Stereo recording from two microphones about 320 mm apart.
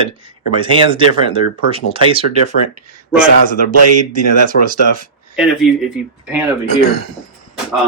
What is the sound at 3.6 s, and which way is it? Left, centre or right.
Speech, right.